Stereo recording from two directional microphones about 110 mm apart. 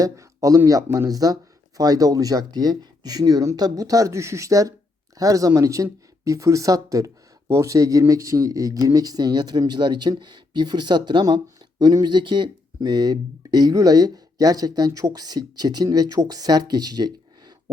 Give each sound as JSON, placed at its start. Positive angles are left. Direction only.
{"t": 0.0, "sound": "speech", "side_deg": -30}